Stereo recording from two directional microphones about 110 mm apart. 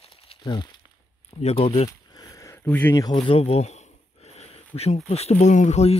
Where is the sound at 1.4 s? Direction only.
60° left (ahead or behind).